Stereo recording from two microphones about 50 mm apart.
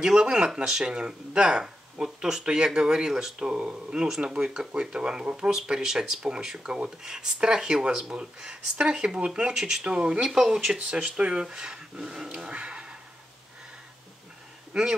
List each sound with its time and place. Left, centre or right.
0.0 s speech: centre
10.9 s speech: right